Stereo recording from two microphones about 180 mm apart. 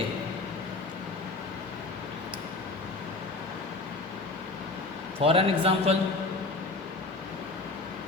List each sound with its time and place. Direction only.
5.2 s a man's voice: 30° right (ahead or behind)